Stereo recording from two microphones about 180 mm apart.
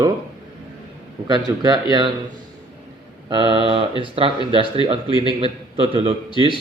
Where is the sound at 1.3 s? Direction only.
25° right (ahead or behind).